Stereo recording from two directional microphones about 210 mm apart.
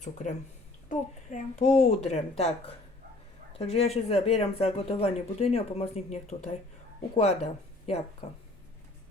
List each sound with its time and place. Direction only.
0.0 s a child's voice: 35° left (ahead or behind)